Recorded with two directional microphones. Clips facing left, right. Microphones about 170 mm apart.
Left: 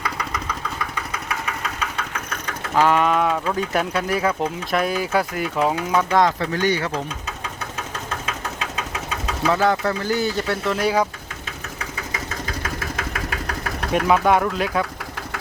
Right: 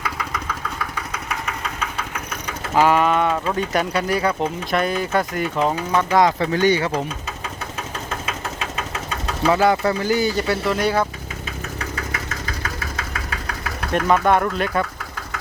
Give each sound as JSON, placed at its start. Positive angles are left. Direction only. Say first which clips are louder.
{"t": 0.0, "sound": "engine", "louder": "even", "side_deg": 0}
{"t": 1.3, "sound": "speech", "louder": "even", "side_deg": -5}
{"t": 6.4, "sound": "speech", "louder": "right 4 dB", "side_deg": -20}
{"t": 8.3, "sound": "engine knocking", "louder": "right 1 dB", "side_deg": 0}
{"t": 9.5, "sound": "speech", "louder": "right 2 dB", "side_deg": -10}
{"t": 13.9, "sound": "speech", "louder": "even", "side_deg": 5}